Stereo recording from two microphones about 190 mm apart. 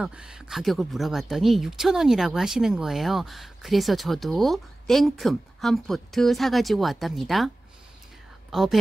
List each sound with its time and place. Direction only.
0.0 s speech: 5° right (ahead or behind)